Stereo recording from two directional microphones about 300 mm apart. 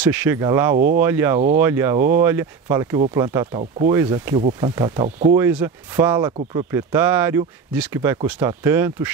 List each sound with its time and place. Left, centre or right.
0.0 s speech: centre
0.7 s speech: right
1.0 s speech: centre